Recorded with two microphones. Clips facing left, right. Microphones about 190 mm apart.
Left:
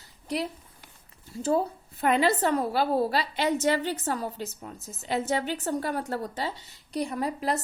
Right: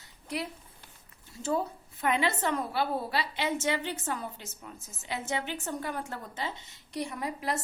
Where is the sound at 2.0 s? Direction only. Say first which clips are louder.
Left 5 dB; 35° left (ahead or behind).